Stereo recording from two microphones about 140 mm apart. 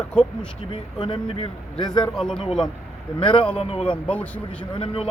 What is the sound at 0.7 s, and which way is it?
Speech, 40° left (ahead or behind).